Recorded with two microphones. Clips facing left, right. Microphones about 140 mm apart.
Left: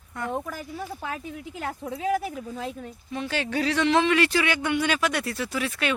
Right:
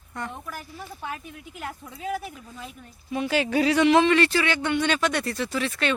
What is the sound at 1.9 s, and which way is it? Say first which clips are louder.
Speech: left 6 dB; 90° left.